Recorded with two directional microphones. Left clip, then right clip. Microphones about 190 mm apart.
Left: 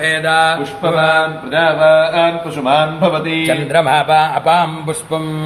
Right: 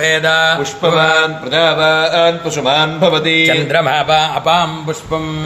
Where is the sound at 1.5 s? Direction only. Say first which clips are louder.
Left 3 dB; 65° right (ahead or behind).